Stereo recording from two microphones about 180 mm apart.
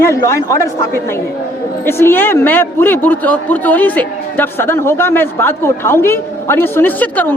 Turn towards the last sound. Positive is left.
turn(degrees=10)  # may be behind; listen again after turning